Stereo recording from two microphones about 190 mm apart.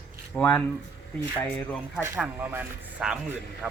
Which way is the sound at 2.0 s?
10° right (ahead or behind).